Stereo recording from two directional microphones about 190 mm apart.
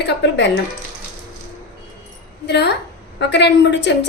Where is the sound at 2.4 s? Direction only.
60° left (ahead or behind).